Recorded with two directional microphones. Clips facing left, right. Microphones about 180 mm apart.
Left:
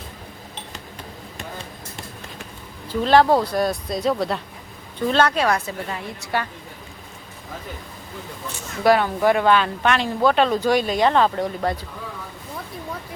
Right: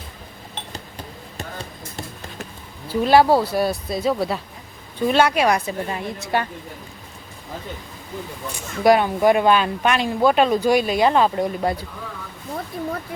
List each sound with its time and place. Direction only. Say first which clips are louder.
2.9 s speech: right 1 dB; 10° right (ahead or behind)
8.4 s speech: right 2 dB; 15° right (ahead or behind)